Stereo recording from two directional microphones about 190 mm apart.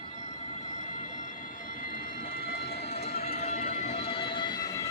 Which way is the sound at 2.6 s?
30° left (ahead or behind).